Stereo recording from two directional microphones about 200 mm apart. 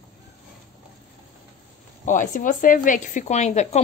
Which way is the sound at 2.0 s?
40° left (ahead or behind).